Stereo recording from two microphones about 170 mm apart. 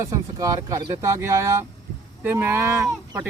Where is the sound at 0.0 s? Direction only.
20° right (ahead or behind).